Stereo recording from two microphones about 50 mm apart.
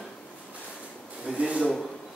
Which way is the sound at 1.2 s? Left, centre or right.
Right.